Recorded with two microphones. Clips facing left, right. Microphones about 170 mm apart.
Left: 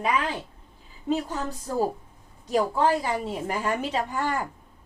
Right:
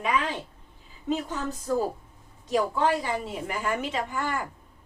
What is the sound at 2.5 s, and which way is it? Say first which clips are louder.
Speech: left 2 dB; 35° left (ahead or behind).